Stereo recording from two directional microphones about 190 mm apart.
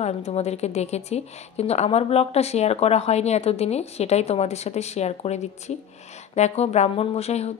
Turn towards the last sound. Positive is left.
turn(degrees=35)  # may be behind; listen again after turning